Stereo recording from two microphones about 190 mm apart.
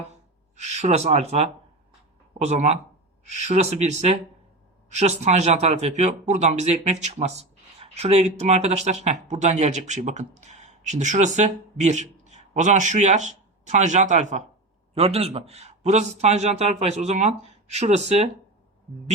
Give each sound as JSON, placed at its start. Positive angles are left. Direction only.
{"t": 0.5, "sound": "speech", "side_deg": -35}